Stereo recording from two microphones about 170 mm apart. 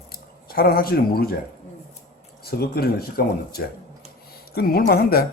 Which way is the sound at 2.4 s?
65° left (ahead or behind).